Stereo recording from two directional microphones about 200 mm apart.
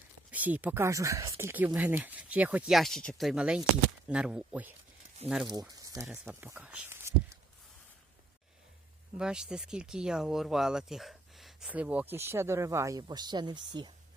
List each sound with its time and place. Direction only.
0.3 s speech: 10° right (ahead or behind)
5.7 s a sound: 15° right (ahead or behind)
6.1 s speech: 10° right (ahead or behind)
9.1 s speech: 5° right (ahead or behind); by 13.9 s 20° right (ahead or behind)